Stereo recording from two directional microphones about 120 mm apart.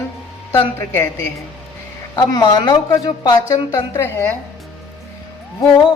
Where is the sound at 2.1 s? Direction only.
35° left (ahead or behind); by 4.4 s 15° left (ahead or behind).